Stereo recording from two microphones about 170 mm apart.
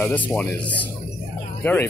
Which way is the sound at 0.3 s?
10° left (ahead or behind).